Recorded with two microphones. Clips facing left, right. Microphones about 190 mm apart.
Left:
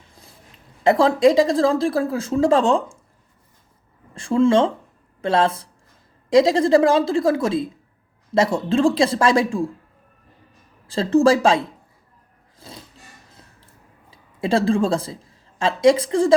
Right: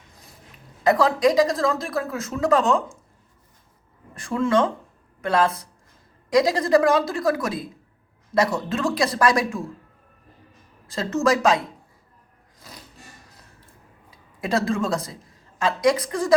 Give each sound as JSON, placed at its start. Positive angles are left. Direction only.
{"t": 0.9, "sound": "speech", "side_deg": 25}
{"t": 4.1, "sound": "speech", "side_deg": 30}
{"t": 10.8, "sound": "speech", "side_deg": 30}
{"t": 12.5, "sound": "roar", "side_deg": 30}
{"t": 14.1, "sound": "a woman's voice", "side_deg": 30}